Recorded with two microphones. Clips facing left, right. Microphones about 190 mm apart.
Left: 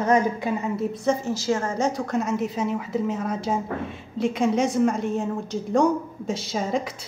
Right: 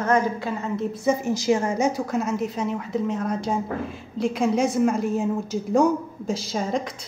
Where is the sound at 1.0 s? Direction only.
15° right (ahead or behind); by 7.1 s 5° left (ahead or behind).